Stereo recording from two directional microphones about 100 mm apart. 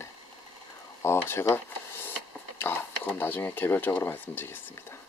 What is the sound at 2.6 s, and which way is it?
Speech, 20° left (ahead or behind).